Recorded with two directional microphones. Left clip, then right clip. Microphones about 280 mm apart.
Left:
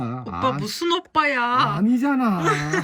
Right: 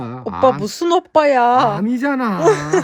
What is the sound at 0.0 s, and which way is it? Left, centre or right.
Speech, centre.